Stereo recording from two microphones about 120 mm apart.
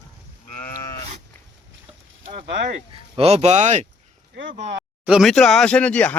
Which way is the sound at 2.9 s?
50° right (ahead or behind).